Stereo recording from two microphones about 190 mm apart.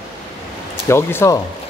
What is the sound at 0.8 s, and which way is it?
Speech, 15° left (ahead or behind).